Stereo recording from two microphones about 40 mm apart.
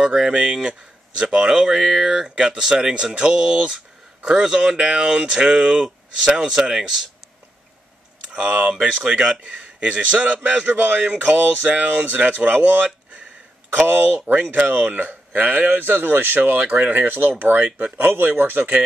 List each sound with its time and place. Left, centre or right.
0.0 s speech: centre
8.3 s speech: right
11.6 s speech: right